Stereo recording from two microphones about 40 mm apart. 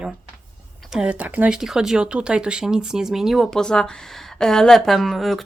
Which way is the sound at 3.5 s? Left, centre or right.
Centre.